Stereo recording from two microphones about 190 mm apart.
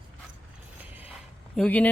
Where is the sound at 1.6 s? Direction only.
10° left (ahead or behind).